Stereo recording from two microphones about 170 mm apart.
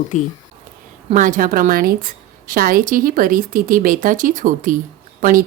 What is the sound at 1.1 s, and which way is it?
A woman's voice, 50° right (ahead or behind).